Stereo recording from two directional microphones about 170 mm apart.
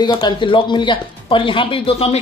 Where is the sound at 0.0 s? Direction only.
25° left (ahead or behind).